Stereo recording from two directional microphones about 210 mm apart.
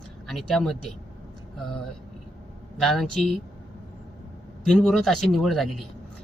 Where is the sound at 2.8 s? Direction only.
Centre (ahead or behind).